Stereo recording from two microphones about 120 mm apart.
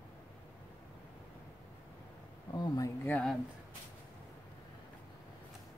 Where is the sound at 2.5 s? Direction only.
25° left (ahead or behind).